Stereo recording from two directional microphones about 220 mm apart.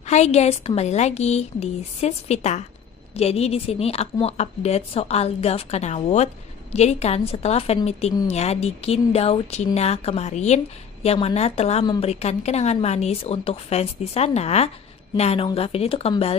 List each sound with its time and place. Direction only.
0.0 s a woman's voice: 30° left (ahead or behind)